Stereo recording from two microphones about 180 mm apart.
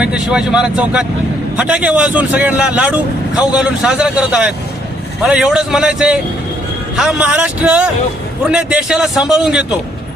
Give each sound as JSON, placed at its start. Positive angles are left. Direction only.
{"t": 0.0, "sound": "a man's voice", "side_deg": -5}